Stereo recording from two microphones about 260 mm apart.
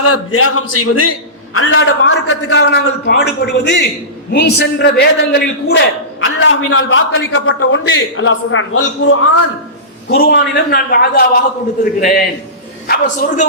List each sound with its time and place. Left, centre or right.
0.0 s a man's voice: left
1.5 s a man's voice: left
10.1 s a man's voice: left